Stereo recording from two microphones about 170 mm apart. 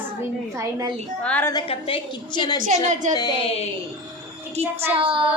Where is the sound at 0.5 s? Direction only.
20° right (ahead or behind).